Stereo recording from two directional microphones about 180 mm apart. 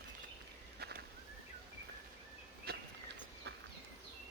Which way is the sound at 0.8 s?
65° right (ahead or behind).